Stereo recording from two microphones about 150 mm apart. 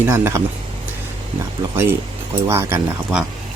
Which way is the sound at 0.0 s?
15° right (ahead or behind).